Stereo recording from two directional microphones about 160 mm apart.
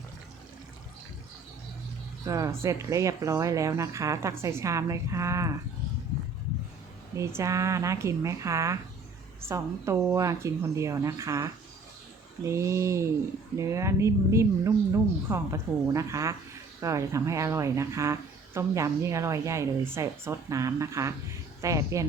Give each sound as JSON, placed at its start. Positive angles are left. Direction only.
{"t": 2.2, "sound": "speech", "side_deg": -20}
{"t": 7.2, "sound": "speech", "side_deg": -20}